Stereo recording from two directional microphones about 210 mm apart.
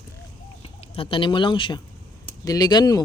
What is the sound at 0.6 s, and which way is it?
Speech, 25° left (ahead or behind).